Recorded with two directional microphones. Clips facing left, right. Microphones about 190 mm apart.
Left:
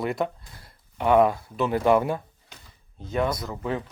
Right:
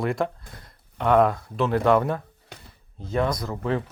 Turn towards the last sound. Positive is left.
turn(degrees=0)  # may be behind; listen again after turning